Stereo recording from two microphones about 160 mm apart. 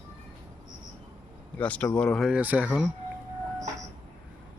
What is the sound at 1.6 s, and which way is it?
Speech, 10° left (ahead or behind).